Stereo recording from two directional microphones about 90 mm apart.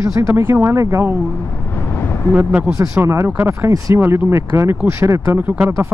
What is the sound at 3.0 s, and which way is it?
Speech, 30° right (ahead or behind).